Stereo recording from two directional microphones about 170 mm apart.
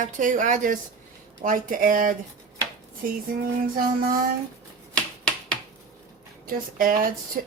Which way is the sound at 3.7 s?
60° right (ahead or behind).